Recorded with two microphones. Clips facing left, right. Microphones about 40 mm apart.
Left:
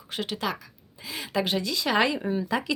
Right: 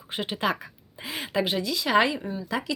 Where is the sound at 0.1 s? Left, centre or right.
Right.